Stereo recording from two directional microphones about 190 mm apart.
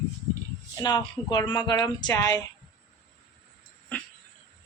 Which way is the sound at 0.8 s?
20° left (ahead or behind).